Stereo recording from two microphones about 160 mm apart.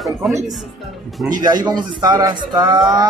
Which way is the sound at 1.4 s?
25° right (ahead or behind).